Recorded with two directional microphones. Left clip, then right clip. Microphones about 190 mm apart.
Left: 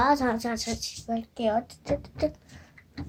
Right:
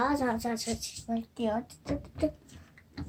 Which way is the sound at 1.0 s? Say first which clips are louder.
Left 5 dB; 15° left (ahead or behind).